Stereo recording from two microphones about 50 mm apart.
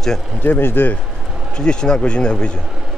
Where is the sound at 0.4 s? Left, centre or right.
Left.